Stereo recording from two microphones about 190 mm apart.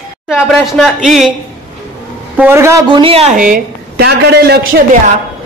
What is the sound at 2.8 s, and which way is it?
A woman's voice, 25° right (ahead or behind).